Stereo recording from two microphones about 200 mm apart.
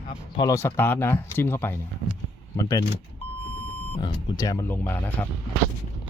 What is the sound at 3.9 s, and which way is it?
Speech, 25° left (ahead or behind).